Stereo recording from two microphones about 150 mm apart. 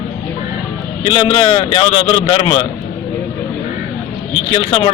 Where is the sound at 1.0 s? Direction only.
35° left (ahead or behind).